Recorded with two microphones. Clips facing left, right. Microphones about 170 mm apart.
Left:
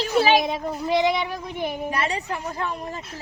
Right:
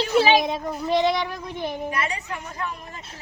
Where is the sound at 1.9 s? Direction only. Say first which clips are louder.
Left 2 dB; 30° left (ahead or behind).